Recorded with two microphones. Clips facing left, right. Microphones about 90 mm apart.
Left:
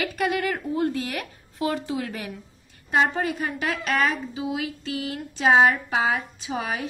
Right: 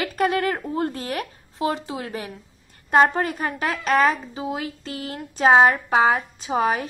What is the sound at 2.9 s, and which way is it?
A woman's voice, 45° right (ahead or behind).